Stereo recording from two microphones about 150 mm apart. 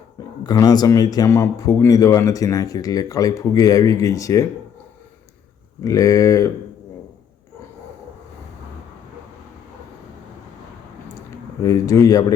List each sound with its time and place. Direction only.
0.4 s speech: 25° left (ahead or behind)
5.8 s speech: 20° left (ahead or behind)
11.6 s speech: 20° left (ahead or behind)